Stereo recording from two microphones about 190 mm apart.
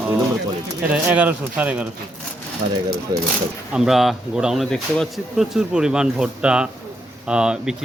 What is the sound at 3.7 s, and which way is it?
Speech, centre (ahead or behind).